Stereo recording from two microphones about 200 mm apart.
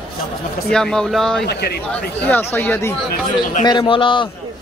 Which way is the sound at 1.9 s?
5° left (ahead or behind).